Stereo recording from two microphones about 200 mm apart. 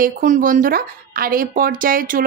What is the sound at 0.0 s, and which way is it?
Speech, 40° right (ahead or behind).